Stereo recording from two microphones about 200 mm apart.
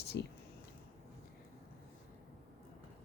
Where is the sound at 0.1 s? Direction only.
55° left (ahead or behind).